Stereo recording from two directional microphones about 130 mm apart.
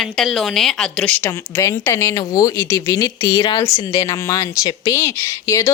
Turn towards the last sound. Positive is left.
turn(degrees=25)  # may be behind; listen again after turning